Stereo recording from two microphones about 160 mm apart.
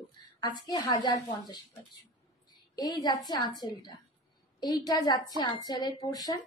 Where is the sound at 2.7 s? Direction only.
25° left (ahead or behind).